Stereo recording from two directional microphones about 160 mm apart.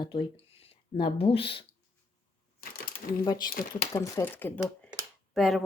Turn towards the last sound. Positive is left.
turn(degrees=0)  # may be behind; listen again after turning